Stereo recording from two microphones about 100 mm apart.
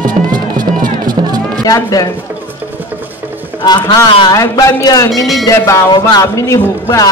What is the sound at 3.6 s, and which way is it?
Speech, 40° left (ahead or behind).